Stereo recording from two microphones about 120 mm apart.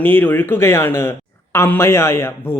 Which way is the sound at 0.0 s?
15° left (ahead or behind).